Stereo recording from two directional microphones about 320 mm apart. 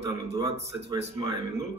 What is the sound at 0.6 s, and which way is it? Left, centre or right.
Speech, centre.